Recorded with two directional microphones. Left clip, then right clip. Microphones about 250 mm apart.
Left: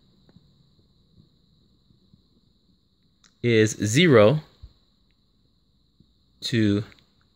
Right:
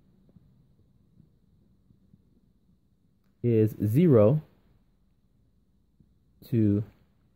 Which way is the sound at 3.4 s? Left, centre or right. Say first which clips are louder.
Left 5 dB; centre.